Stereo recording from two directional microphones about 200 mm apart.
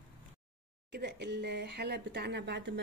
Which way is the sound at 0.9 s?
55° right (ahead or behind).